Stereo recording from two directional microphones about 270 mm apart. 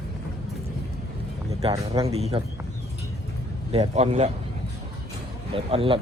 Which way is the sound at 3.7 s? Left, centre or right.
Right.